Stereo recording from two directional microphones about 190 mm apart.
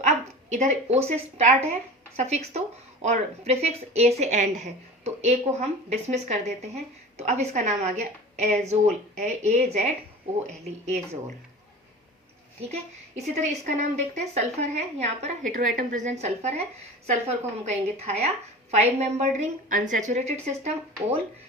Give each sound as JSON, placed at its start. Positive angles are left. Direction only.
{"t": 0.5, "sound": "speech", "side_deg": -40}
{"t": 12.6, "sound": "speech", "side_deg": -35}